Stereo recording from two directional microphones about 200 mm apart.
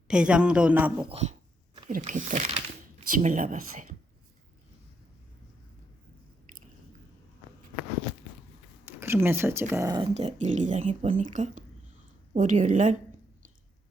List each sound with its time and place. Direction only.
0.1 s speech: 5° right (ahead or behind)
1.1 s speech: 30° right (ahead or behind)
9.0 s speech: 10° right (ahead or behind); by 13.0 s 40° right (ahead or behind)